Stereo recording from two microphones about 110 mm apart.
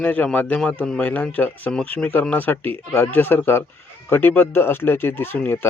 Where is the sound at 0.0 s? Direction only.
15° left (ahead or behind).